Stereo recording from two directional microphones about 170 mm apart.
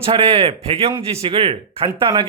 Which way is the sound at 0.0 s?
35° right (ahead or behind).